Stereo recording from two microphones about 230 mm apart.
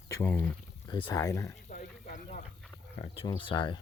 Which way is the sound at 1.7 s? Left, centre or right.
Left.